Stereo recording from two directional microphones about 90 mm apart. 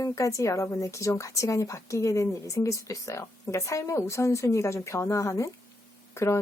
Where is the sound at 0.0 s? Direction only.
35° left (ahead or behind).